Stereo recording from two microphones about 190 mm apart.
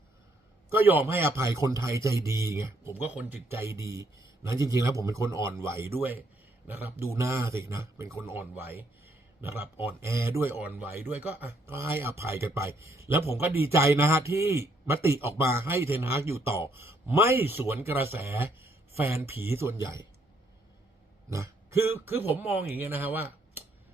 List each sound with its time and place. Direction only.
0.7 s a man's voice: 10° right (ahead or behind)
21.2 s a sound: 15° right (ahead or behind)
22.4 s a man's voice: 10° right (ahead or behind)